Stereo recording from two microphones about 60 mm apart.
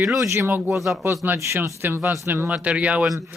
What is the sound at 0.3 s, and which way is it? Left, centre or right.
Speech, right.